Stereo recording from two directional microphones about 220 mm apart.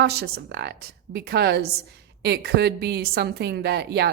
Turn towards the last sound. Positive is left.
turn(degrees=-50)  # may be behind; listen again after turning